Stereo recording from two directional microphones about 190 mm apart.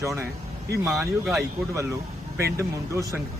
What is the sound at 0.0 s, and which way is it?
Speech, 15° right (ahead or behind).